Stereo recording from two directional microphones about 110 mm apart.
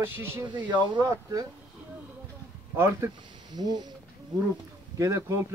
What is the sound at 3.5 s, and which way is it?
Speech, 35° right (ahead or behind).